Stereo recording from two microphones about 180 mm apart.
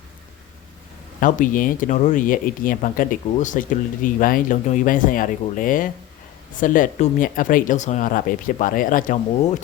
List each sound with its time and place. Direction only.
1.2 s speech: 50° left (ahead or behind)